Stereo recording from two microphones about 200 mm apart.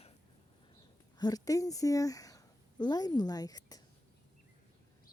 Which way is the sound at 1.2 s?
20° left (ahead or behind).